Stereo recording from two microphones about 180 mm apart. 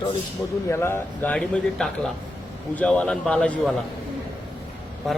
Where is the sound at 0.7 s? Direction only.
15° left (ahead or behind).